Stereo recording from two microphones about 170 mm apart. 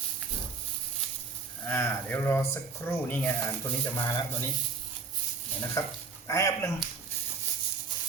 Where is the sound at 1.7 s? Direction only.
15° left (ahead or behind).